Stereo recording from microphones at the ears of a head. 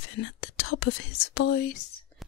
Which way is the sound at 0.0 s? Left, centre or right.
Left.